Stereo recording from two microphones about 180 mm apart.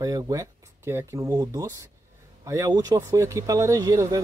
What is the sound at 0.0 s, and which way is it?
Speech, 20° right (ahead or behind).